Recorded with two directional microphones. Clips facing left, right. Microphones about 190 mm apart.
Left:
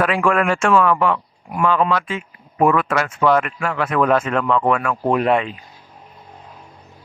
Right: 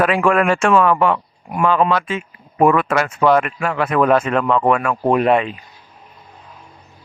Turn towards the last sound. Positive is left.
turn(degrees=-20)  # may be behind; listen again after turning